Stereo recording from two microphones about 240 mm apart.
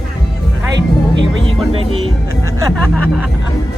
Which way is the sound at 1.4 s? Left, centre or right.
Right.